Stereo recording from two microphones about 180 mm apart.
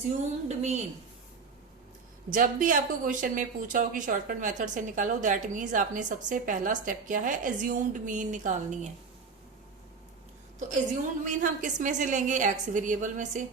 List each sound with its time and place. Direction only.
0.1 s a woman's voice: 40° right (ahead or behind)
2.3 s speech: 50° right (ahead or behind)
11.3 s speech: 45° right (ahead or behind)